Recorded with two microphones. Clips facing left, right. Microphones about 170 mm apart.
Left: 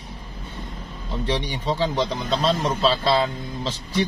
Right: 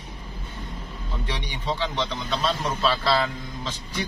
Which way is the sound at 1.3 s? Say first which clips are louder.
Left 6 dB; 40° left (ahead or behind).